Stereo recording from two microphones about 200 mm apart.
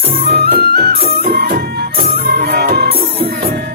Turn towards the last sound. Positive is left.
turn(degrees=-50)  # may be behind; listen again after turning